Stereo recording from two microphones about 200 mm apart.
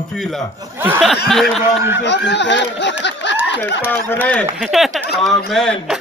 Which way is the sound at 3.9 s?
10° left (ahead or behind).